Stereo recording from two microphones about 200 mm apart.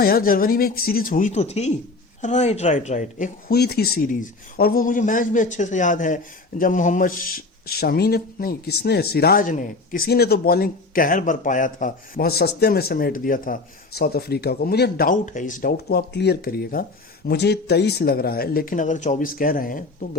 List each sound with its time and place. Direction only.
0.0 s a man's voice: 45° left (ahead or behind)
3.6 s a man's voice: 50° left (ahead or behind)